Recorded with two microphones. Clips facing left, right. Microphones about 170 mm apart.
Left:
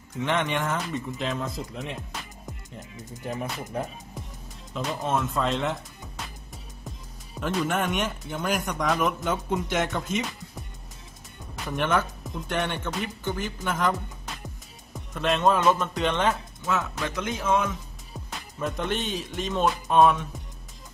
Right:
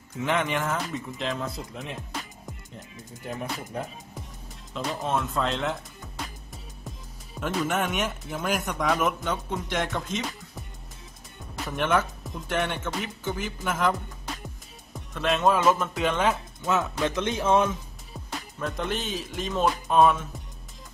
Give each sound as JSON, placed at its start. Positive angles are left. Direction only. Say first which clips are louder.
{"t": 0.2, "sound": "speech", "louder": "even", "side_deg": 0}
{"t": 3.3, "sound": "speech", "louder": "left 1 dB", "side_deg": 0}
{"t": 7.3, "sound": "speech", "louder": "even", "side_deg": 0}
{"t": 17.0, "sound": "speech", "louder": "right 4 dB", "side_deg": -25}
{"t": 18.6, "sound": "speech", "louder": "left 2 dB", "side_deg": 0}